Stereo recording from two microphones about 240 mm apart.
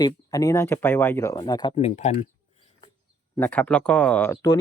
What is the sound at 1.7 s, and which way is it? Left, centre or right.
Speech, left.